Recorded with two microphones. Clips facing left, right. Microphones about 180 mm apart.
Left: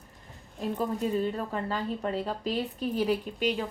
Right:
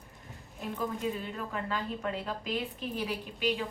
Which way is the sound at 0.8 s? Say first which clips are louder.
Left 5 dB; 40° left (ahead or behind).